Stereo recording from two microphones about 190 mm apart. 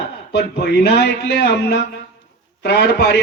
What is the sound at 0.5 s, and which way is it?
A man's voice, 60° left (ahead or behind).